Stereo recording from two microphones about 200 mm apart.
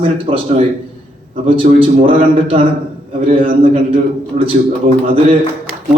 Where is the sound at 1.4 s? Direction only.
25° right (ahead or behind).